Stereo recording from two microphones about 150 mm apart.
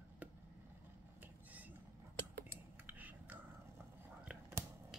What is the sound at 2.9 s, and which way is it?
Whispering, 10° right (ahead or behind).